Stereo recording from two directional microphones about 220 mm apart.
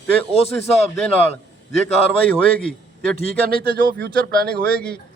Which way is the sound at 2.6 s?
5° left (ahead or behind).